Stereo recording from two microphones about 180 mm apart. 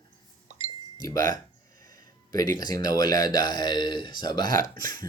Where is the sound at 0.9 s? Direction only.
20° left (ahead or behind).